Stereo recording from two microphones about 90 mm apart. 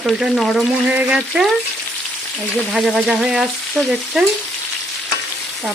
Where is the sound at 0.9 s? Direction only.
15° right (ahead or behind).